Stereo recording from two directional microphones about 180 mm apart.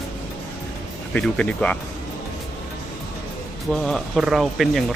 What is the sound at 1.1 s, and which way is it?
Speech, 5° left (ahead or behind).